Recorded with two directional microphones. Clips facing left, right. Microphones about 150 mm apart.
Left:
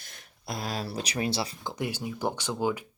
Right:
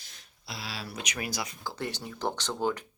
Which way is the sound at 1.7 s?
10° left (ahead or behind).